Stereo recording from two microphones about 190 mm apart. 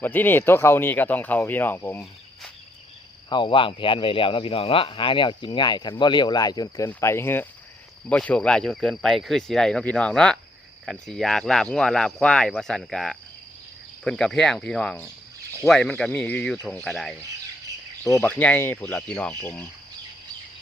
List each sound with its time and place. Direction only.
0.0 s speech: 10° left (ahead or behind)
3.2 s speech: 25° left (ahead or behind); by 17.2 s centre (ahead or behind)
18.2 s speech: 5° left (ahead or behind)